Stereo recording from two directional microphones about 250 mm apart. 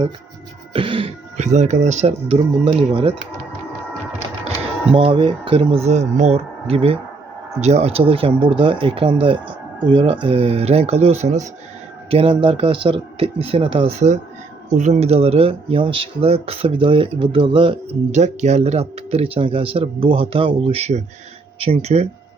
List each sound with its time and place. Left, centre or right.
0.7 s speech: right
4.4 s speech: right